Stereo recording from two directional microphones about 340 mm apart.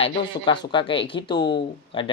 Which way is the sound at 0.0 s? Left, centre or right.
Centre.